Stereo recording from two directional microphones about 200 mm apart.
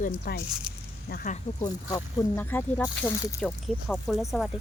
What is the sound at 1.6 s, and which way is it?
Speech, 15° left (ahead or behind).